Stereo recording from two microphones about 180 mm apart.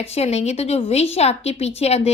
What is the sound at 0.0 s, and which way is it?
Speech, 35° left (ahead or behind).